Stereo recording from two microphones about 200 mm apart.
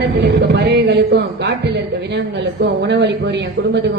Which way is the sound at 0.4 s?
55° right (ahead or behind).